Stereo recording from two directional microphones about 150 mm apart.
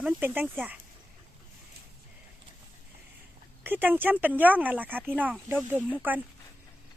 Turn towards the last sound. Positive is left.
turn(degrees=-10)  # may be behind; listen again after turning